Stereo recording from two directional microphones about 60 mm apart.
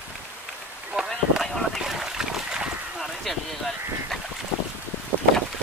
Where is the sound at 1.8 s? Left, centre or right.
Centre.